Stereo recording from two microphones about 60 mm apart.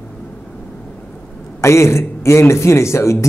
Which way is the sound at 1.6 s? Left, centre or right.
Left.